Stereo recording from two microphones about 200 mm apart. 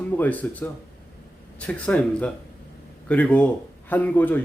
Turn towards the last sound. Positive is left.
turn(degrees=10)  # may be behind; listen again after turning